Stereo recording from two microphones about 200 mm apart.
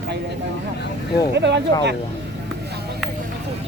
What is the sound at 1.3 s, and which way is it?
Speech, 60° right (ahead or behind).